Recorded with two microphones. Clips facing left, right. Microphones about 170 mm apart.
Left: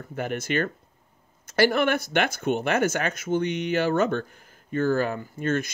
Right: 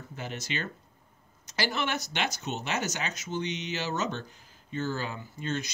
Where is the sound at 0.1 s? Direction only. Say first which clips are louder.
Left 10 dB; 55° left (ahead or behind).